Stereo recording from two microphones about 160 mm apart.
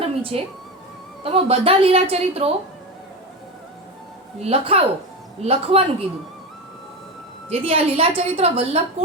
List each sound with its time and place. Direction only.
0.0 s music: 35° right (ahead or behind)
1.2 s a woman's voice: 35° right (ahead or behind)
4.4 s a woman's voice: 40° right (ahead or behind)
7.5 s a woman's voice: 35° right (ahead or behind)